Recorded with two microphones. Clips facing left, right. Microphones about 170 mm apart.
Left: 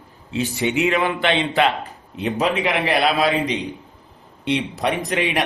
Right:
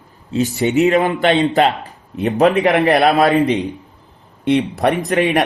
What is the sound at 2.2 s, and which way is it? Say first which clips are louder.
A man's voice: right 7 dB; 55° right (ahead or behind).